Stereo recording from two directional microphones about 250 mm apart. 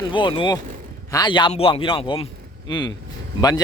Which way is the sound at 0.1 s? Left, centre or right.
Centre.